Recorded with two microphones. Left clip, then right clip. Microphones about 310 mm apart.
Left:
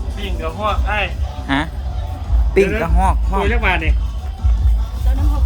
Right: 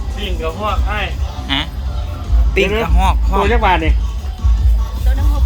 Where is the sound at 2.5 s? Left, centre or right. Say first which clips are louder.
Even; centre.